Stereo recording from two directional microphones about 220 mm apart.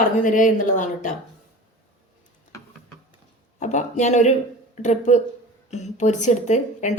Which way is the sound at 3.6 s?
35° left (ahead or behind).